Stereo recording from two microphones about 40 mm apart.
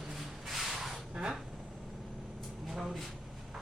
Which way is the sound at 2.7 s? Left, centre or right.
Centre.